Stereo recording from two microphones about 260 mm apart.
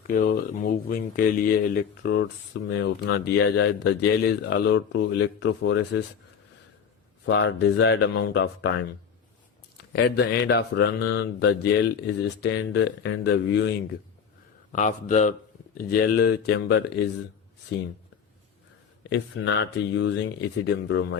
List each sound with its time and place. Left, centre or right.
0.1 s speech: left
7.3 s speech: left
9.9 s speech: left
14.7 s a man's voice: left
19.1 s speech: left